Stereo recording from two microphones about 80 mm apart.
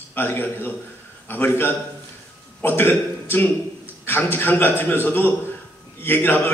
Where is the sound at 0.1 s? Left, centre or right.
Left.